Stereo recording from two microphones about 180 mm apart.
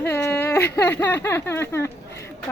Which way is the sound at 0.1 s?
10° left (ahead or behind).